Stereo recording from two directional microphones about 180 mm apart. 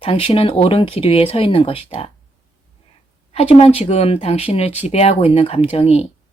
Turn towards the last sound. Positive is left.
turn(degrees=35)  # may be behind; listen again after turning